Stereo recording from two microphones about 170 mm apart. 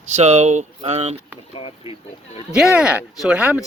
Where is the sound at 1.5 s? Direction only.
30° left (ahead or behind).